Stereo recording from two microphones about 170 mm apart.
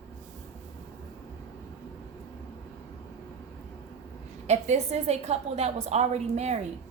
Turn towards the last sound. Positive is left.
turn(degrees=-40)  # may be behind; listen again after turning